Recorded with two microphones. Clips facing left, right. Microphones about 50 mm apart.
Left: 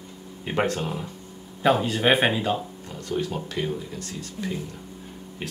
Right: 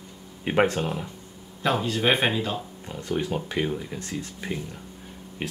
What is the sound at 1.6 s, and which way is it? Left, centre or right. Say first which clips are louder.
Speech: left 3 dB; centre.